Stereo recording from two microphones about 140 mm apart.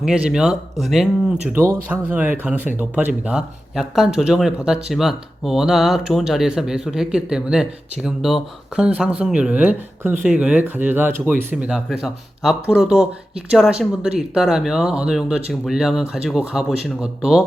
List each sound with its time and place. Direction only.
0.0 s speech: 5° right (ahead or behind)
1.5 s speech: 15° right (ahead or behind)